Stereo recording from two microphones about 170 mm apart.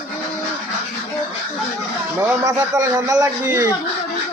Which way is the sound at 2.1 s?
15° right (ahead or behind).